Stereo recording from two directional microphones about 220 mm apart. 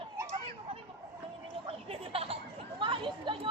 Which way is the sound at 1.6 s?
25° right (ahead or behind).